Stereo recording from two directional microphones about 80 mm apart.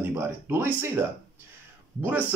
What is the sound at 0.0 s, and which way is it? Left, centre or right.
Speech, right.